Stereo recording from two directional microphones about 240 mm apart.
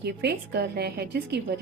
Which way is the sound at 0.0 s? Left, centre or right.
Right.